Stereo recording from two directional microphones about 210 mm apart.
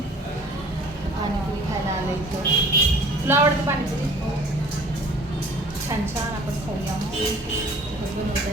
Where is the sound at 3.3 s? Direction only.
10° right (ahead or behind).